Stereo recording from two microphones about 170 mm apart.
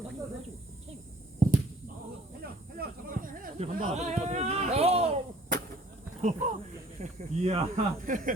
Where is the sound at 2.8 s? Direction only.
55° right (ahead or behind).